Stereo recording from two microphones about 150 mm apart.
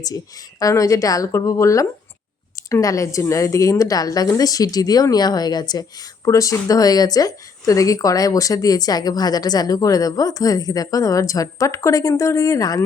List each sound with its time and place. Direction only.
0.6 s speech: 20° left (ahead or behind)